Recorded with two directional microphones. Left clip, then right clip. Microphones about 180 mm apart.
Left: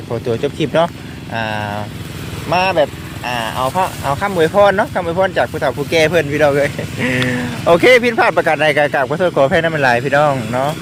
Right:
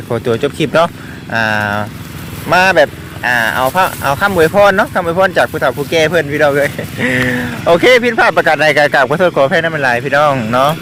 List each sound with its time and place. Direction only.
0.1 s speech: 25° right (ahead or behind)
5.9 s speech: 5° right (ahead or behind)
9.3 s speech: centre (ahead or behind)
10.5 s speech: 25° right (ahead or behind)